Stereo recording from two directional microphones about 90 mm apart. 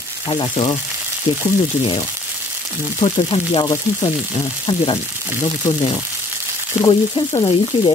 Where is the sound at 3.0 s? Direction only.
90° left.